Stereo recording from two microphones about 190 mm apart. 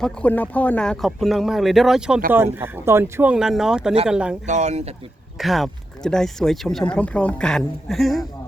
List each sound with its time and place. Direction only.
0.0 s speech: 5° left (ahead or behind)
4.4 s speech: 35° right (ahead or behind)
5.4 s speech: centre (ahead or behind)